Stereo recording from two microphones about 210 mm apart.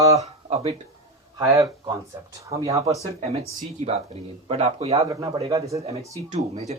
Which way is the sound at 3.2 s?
30° right (ahead or behind).